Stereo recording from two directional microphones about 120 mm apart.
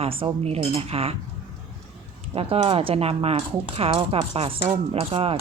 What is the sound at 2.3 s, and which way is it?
A woman's voice, 55° right (ahead or behind).